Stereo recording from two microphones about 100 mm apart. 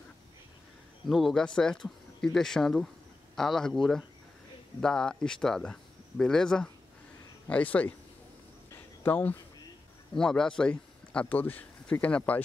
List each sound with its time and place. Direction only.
1.0 s speech: centre (ahead or behind)
9.0 s speech: 15° left (ahead or behind)
10.1 s speech: 5° left (ahead or behind)